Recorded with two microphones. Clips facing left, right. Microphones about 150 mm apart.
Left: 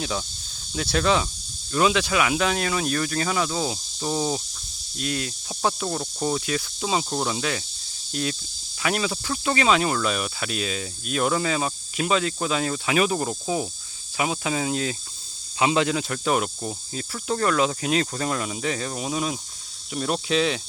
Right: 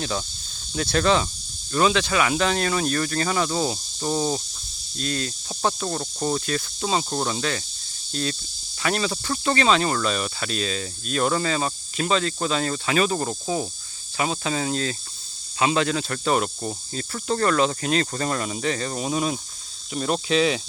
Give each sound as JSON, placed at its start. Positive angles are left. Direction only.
{"t": 0.0, "sound": "speech", "side_deg": 0}